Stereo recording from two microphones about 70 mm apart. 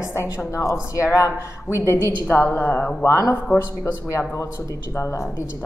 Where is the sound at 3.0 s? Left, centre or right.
Left.